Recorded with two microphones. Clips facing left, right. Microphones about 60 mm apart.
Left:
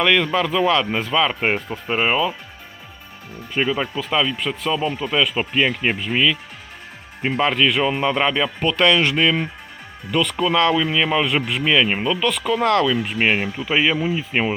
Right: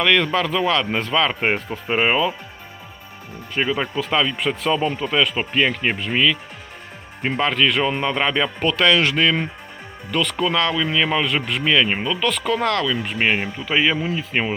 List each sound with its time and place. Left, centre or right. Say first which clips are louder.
0.0 s speech: even; centre
3.5 s speech: even; centre
10.1 s speech: left 2 dB; centre
12.6 s speech: left 6 dB; left
12.9 s speech: left 1 dB; centre